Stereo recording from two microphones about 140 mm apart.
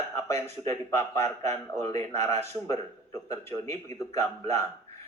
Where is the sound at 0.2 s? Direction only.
20° left (ahead or behind).